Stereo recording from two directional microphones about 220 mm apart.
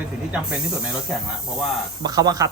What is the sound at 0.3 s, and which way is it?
Speech, 5° right (ahead or behind).